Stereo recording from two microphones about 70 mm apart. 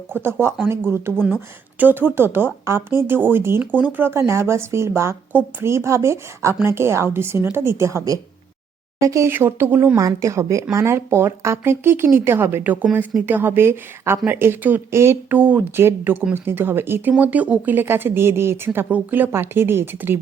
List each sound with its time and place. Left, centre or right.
0.1 s a woman's voice: right
3.6 s speech: right
4.1 s a woman's voice: right
5.3 s speech: right
5.6 s a woman's voice: right
9.3 s a woman's voice: right
10.0 s a woman's voice: right
12.7 s a woman's voice: right
15.4 s speech: right
15.8 s a woman's voice: right